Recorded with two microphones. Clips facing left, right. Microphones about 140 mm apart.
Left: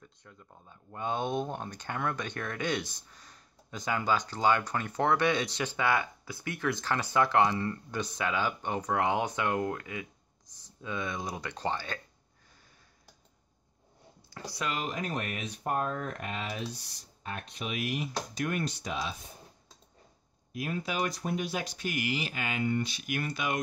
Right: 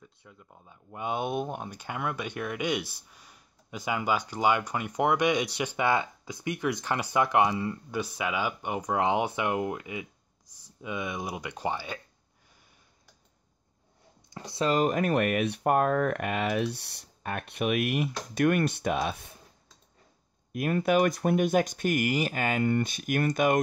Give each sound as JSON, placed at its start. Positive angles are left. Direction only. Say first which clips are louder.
{"t": 0.0, "sound": "speech", "louder": "right 1 dB", "side_deg": -5}
{"t": 14.3, "sound": "speech", "louder": "right 7 dB", "side_deg": -25}
{"t": 14.7, "sound": "speech", "louder": "right 10 dB", "side_deg": -50}
{"t": 20.5, "sound": "speech", "louder": "right 9 dB", "side_deg": -55}